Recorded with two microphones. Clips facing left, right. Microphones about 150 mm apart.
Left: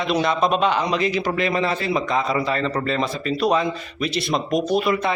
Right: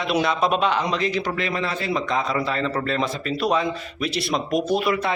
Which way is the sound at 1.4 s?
15° left (ahead or behind).